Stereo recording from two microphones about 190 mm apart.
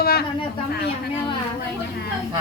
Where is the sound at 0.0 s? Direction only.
55° left (ahead or behind).